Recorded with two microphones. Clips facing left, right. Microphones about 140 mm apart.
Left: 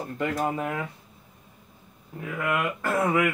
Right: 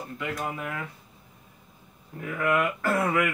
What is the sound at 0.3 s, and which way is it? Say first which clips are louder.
Speech: left 4 dB; 30° left (ahead or behind).